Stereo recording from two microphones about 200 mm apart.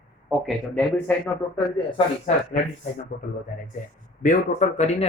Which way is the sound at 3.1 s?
55° left (ahead or behind).